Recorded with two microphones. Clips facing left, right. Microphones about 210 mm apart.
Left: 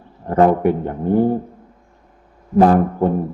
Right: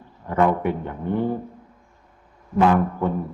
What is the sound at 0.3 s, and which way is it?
A man's voice, 40° left (ahead or behind).